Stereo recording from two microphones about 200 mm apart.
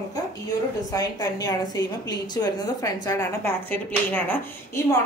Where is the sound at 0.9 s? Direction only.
15° left (ahead or behind).